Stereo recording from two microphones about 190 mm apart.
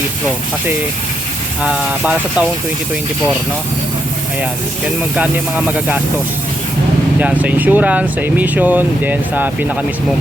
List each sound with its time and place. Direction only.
1.6 s speech: 5° right (ahead or behind)
5.1 s speech: 5° right (ahead or behind)
7.2 s speech: 5° right (ahead or behind)